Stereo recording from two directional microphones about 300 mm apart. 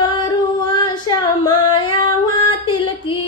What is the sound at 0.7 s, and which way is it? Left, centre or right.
Female singing, centre.